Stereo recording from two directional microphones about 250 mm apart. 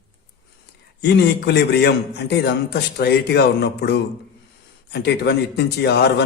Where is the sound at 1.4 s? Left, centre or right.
Left.